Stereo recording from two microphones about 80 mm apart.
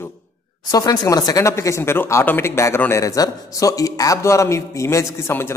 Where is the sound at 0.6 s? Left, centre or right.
Left.